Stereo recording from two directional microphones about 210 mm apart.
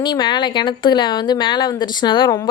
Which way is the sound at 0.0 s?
20° left (ahead or behind).